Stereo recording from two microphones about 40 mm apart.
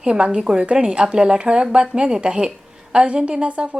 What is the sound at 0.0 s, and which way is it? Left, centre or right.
A woman's voice, right.